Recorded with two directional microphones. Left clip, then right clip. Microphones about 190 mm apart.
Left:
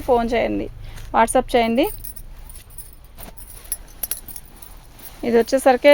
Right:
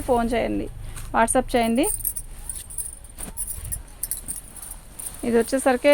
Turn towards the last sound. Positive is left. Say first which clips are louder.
# left 5 dB
turn(degrees=45)  # may be behind; listen again after turning